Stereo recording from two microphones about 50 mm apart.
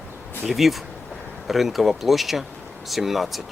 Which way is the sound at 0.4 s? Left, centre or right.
Centre.